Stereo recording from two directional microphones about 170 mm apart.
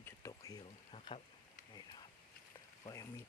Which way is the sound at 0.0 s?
15° left (ahead or behind).